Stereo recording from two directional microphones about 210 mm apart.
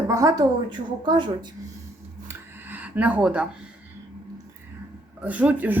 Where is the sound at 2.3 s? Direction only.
10° right (ahead or behind).